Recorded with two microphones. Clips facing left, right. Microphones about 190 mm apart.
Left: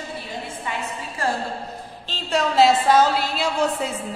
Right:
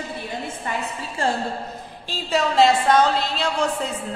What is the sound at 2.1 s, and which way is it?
A woman's voice, centre (ahead or behind).